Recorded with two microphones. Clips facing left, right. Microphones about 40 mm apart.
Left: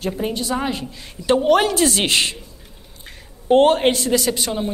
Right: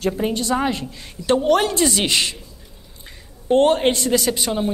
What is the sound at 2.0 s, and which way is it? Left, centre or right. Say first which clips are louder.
Speech: left 1 dB; left.